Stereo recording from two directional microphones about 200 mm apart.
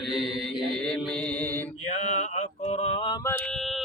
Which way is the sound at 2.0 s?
35° left (ahead or behind).